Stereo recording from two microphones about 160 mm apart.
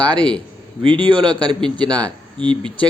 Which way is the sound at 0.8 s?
30° right (ahead or behind).